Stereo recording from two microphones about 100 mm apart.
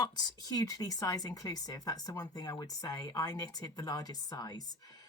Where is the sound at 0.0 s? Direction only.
40° left (ahead or behind).